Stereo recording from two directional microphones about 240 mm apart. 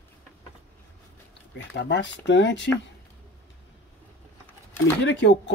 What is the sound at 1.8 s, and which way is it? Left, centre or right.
Speech, left.